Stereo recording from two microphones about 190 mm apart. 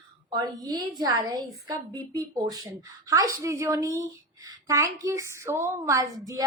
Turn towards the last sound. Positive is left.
turn(degrees=-20)  # may be behind; listen again after turning